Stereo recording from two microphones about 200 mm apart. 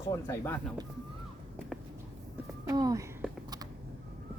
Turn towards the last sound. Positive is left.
turn(degrees=-15)  # may be behind; listen again after turning